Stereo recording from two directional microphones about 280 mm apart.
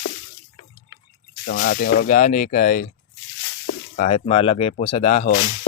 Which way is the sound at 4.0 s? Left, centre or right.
Left.